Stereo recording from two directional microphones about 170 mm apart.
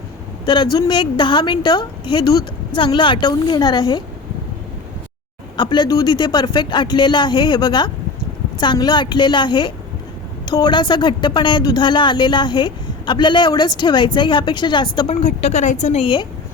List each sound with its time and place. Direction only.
0.4 s speech: 25° left (ahead or behind)
5.5 s speech: 25° left (ahead or behind)
15.1 s a woman's voice: 40° left (ahead or behind)